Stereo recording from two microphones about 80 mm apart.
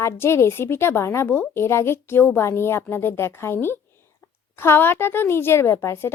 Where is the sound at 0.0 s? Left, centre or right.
Left.